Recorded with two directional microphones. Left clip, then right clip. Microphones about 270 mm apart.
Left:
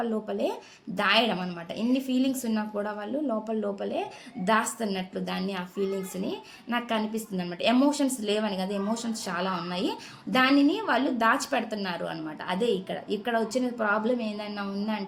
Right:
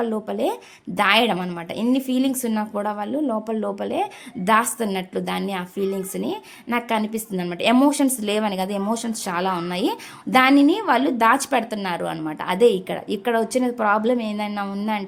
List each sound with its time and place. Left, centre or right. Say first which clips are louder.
0.0 s a woman's voice: right 6 dB; right